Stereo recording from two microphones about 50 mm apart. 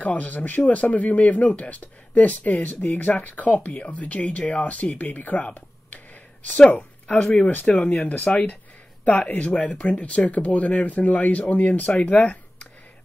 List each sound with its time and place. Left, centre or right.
0.0 s speech: left